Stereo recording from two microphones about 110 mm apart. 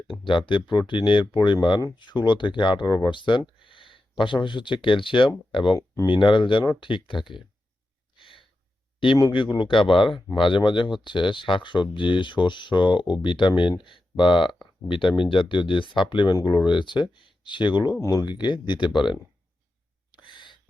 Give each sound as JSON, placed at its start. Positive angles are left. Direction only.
{"t": 0.1, "sound": "speech", "side_deg": 50}
{"t": 5.7, "sound": "speech", "side_deg": 30}
{"t": 6.1, "sound": "speech", "side_deg": 50}
{"t": 8.1, "sound": "gasp", "side_deg": 50}
{"t": 9.1, "sound": "speech", "side_deg": 45}
{"t": 18.0, "sound": "speech", "side_deg": 30}
{"t": 18.3, "sound": "speech", "side_deg": 45}
{"t": 20.1, "sound": "gasp", "side_deg": 45}